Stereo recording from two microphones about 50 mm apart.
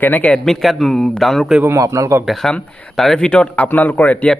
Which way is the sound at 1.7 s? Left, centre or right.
Right.